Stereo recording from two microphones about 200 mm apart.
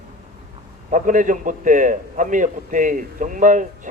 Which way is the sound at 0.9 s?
40° right (ahead or behind).